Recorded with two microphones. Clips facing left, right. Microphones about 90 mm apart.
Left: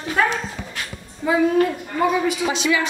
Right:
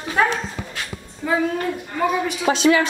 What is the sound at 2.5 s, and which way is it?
Speech, 40° right (ahead or behind).